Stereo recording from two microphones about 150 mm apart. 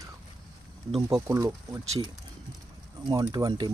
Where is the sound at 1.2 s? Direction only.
20° right (ahead or behind).